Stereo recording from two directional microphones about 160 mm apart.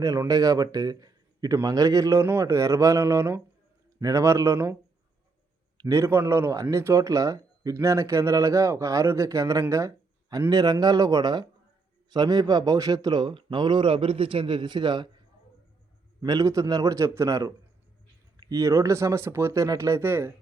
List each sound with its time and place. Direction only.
0.0 s speech: 20° right (ahead or behind)
16.2 s speech: 25° right (ahead or behind)